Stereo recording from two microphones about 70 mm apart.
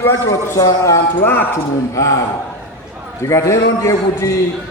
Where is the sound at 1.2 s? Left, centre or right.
Left.